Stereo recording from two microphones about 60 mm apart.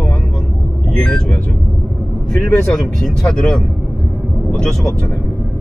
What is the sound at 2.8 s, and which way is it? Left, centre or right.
Speech, centre.